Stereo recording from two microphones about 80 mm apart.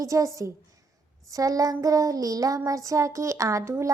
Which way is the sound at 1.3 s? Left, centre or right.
Right.